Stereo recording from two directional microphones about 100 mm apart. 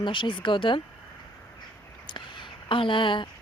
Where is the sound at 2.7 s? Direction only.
55° left (ahead or behind).